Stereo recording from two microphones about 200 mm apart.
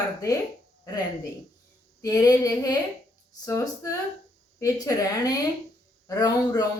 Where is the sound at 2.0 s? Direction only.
20° left (ahead or behind).